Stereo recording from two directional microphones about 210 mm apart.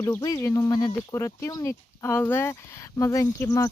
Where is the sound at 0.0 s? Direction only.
15° left (ahead or behind).